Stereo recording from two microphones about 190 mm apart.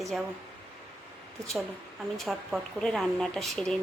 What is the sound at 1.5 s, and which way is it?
A woman's voice, centre (ahead or behind).